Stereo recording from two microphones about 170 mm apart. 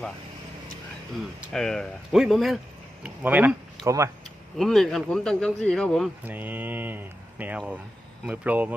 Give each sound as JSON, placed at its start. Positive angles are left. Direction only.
{"t": 1.2, "sound": "speech", "side_deg": 5}
{"t": 4.5, "sound": "speech", "side_deg": 0}
{"t": 6.2, "sound": "speech", "side_deg": -10}